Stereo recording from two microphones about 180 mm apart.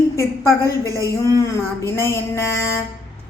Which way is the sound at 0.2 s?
15° left (ahead or behind).